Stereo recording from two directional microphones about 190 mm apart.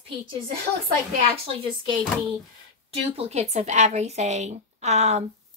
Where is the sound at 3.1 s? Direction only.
35° right (ahead or behind).